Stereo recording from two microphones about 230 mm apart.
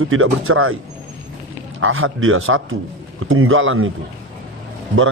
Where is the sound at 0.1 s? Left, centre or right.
Right.